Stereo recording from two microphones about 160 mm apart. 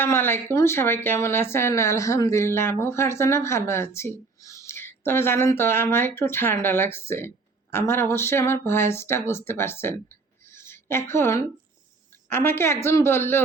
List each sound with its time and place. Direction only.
0.0 s speech: 15° left (ahead or behind)